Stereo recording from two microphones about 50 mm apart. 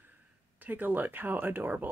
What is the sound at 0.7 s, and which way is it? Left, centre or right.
Speech, right.